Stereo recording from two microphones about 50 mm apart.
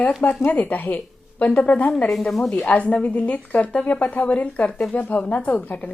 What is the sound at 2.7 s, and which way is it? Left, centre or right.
A woman's voice, left.